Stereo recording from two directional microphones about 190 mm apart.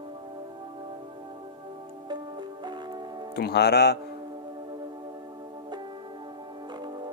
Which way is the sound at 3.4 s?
60° left (ahead or behind).